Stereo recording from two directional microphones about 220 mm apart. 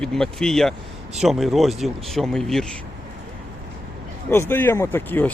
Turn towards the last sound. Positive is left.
turn(degrees=10)  # may be behind; listen again after turning